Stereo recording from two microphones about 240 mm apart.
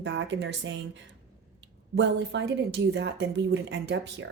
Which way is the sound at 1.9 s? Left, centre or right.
Right.